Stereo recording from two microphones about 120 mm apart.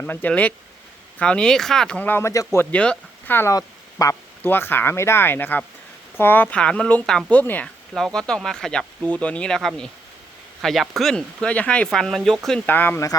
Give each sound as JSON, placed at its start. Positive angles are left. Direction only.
{"t": 0.0, "sound": "speech", "side_deg": 15}
{"t": 2.7, "sound": "speech", "side_deg": 10}
{"t": 3.5, "sound": "speech", "side_deg": 25}
{"t": 7.9, "sound": "speech", "side_deg": 0}